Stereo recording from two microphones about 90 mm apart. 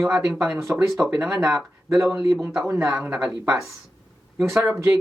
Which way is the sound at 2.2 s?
35° right (ahead or behind).